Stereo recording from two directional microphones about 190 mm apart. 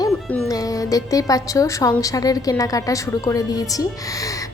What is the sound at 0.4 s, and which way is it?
A woman's voice, 20° left (ahead or behind).